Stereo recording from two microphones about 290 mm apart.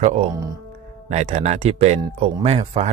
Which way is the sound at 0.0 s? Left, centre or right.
Right.